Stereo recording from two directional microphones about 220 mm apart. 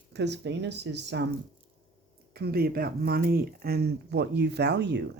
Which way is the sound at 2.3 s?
45° right (ahead or behind).